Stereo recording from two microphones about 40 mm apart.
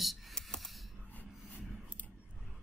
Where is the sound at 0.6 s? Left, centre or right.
Centre.